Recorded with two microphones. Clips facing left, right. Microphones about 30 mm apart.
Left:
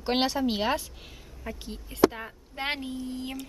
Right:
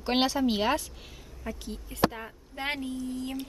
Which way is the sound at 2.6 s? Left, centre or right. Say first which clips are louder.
Left 1 dB; left.